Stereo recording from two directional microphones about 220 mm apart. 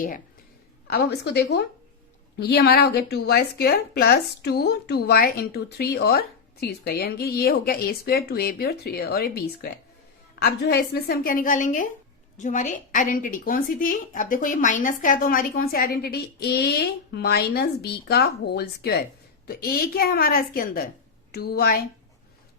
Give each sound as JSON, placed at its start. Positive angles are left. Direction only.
{"t": 0.9, "sound": "a woman's voice", "side_deg": 50}